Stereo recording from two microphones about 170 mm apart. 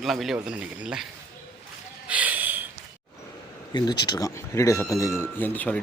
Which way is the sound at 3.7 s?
25° left (ahead or behind).